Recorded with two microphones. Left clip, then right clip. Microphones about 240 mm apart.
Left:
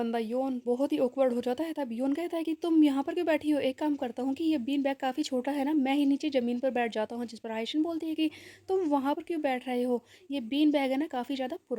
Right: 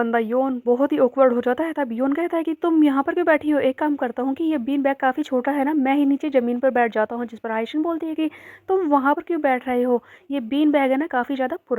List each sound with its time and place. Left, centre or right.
0.0 s speech: centre